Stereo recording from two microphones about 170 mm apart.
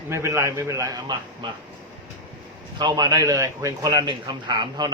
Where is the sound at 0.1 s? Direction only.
15° right (ahead or behind).